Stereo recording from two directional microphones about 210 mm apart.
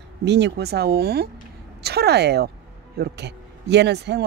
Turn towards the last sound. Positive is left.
turn(degrees=-55)  # may be behind; listen again after turning